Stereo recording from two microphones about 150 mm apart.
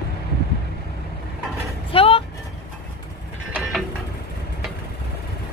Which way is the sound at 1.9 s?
40° left (ahead or behind).